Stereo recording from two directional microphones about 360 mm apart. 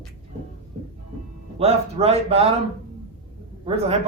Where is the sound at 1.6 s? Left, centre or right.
Centre.